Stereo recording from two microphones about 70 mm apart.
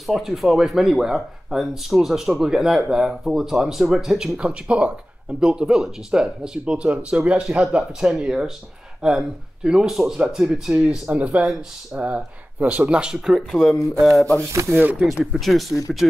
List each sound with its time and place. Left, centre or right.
0.0 s speech: centre
13.5 s speech: centre
14.7 s speech: right
15.3 s speech: centre